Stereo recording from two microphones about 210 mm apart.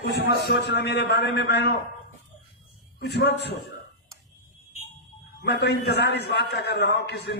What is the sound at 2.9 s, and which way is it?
Speech, 50° left (ahead or behind).